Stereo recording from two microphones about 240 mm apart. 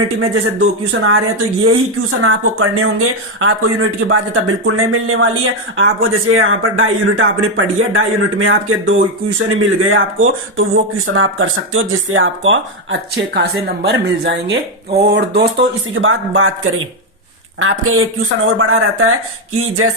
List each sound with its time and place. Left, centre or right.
0.3 s a man's voice: right